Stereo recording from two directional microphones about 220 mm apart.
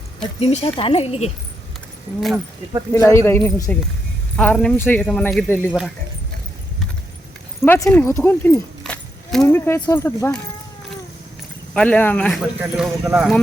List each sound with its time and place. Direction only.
0.3 s speech: 25° left (ahead or behind)
2.9 s speech: 10° left (ahead or behind)
7.6 s speech: 10° left (ahead or behind)
11.7 s speech: 5° left (ahead or behind)